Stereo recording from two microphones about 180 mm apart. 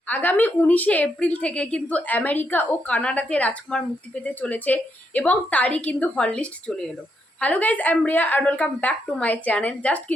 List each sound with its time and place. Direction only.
0.1 s a woman's voice: 10° left (ahead or behind)